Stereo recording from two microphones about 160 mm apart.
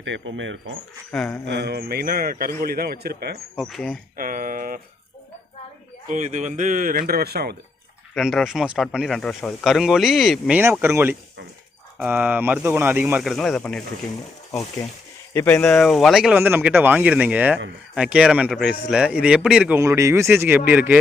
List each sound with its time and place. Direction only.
1.1 s speech: centre (ahead or behind)
1.5 s a man's voice: 90° right
3.5 s speech: centre (ahead or behind)
4.2 s speech: 60° right (ahead or behind)
6.1 s speech: 50° right (ahead or behind)
7.1 s a man's voice: 75° right (ahead or behind)
8.1 s speech: centre (ahead or behind)
10.6 s speech: 15° right (ahead or behind); by 13.8 s 5° left (ahead or behind)
15.3 s speech: 15° left (ahead or behind)
15.6 s speech: 5° left (ahead or behind)
19.8 s speech: 20° right (ahead or behind)